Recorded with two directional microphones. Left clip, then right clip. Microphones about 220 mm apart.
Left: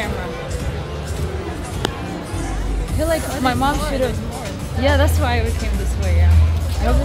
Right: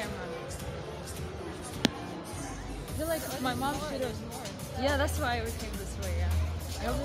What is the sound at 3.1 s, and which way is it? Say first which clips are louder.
Speech: left 13 dB; 20° left (ahead or behind).